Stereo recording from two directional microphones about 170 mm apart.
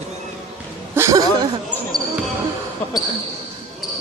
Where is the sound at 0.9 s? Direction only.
20° right (ahead or behind).